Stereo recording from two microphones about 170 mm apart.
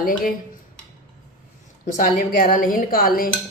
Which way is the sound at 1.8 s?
55° left (ahead or behind).